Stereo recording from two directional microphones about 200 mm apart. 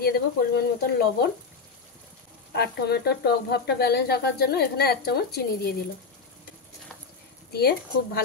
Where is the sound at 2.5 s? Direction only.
55° left (ahead or behind).